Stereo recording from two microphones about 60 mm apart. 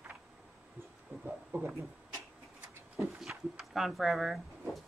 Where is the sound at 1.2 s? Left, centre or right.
Right.